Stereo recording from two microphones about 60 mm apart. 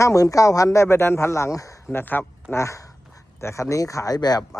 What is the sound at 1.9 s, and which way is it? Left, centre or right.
Speech, left.